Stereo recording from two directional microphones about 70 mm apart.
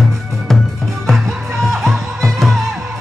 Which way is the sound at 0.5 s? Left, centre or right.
Centre.